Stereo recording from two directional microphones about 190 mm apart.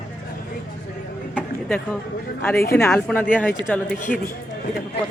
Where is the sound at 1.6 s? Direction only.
5° left (ahead or behind).